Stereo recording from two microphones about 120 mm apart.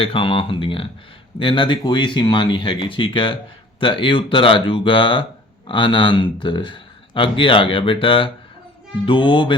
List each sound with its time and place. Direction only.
0.0 s speech: 50° left (ahead or behind)